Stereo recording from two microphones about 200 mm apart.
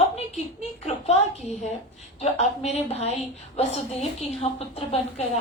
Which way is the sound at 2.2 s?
35° left (ahead or behind).